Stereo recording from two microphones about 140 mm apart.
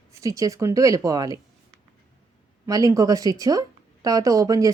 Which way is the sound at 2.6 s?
25° right (ahead or behind).